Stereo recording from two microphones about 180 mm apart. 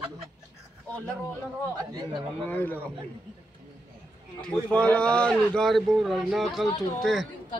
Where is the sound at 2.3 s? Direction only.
10° left (ahead or behind).